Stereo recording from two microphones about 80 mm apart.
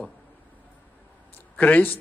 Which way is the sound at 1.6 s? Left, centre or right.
Left.